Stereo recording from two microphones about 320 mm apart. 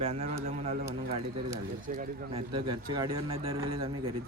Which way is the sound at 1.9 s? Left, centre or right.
Right.